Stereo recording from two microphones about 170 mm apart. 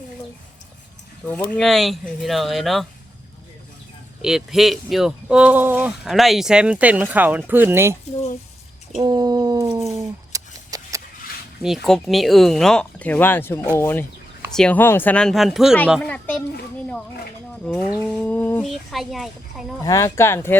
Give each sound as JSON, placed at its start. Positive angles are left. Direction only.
{"t": 1.3, "sound": "speech", "side_deg": 5}
{"t": 4.2, "sound": "speech", "side_deg": -5}
{"t": 8.1, "sound": "speech", "side_deg": 40}
{"t": 9.0, "sound": "bird", "side_deg": -25}
{"t": 9.9, "sound": "a sound", "side_deg": -20}
{"t": 11.6, "sound": "speech", "side_deg": 0}
{"t": 17.7, "sound": "speech", "side_deg": 5}
{"t": 18.6, "sound": "speech", "side_deg": 0}
{"t": 19.8, "sound": "speech", "side_deg": 20}